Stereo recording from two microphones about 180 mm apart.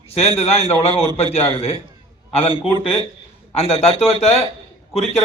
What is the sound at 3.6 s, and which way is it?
Speech, 35° left (ahead or behind).